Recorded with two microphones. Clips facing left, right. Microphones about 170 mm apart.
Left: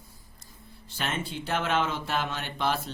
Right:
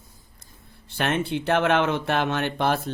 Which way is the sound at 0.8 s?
60° right (ahead or behind).